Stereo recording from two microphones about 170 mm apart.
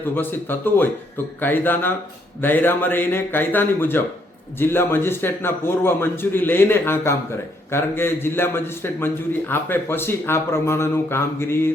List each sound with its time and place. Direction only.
0.2 s a man's voice: 10° left (ahead or behind)